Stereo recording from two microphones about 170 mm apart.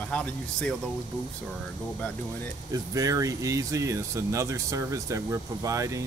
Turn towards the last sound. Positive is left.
turn(degrees=-20)  # may be behind; listen again after turning